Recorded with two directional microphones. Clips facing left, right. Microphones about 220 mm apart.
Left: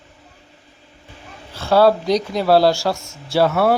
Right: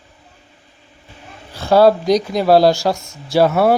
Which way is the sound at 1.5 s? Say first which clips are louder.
Right 3 dB; 15° right (ahead or behind).